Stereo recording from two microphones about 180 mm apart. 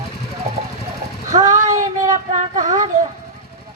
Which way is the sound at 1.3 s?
40° right (ahead or behind).